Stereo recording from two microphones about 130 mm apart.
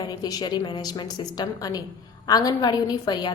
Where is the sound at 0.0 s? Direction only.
30° left (ahead or behind).